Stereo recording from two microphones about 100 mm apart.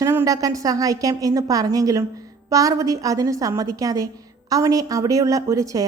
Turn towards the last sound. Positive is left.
turn(degrees=-35)  # may be behind; listen again after turning